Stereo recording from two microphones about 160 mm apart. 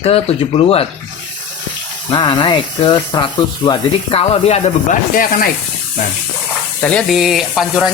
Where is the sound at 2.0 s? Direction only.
30° left (ahead or behind); by 5.5 s 60° left (ahead or behind).